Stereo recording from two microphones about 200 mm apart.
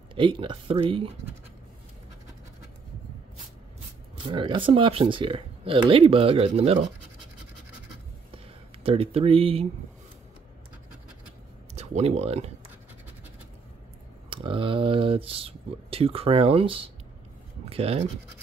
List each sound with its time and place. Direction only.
0.1 s speech: 25° right (ahead or behind)
4.3 s speech: 25° right (ahead or behind)
8.8 s speech: 30° right (ahead or behind)
11.7 s speech: 35° right (ahead or behind)
14.3 s speech: 25° right (ahead or behind)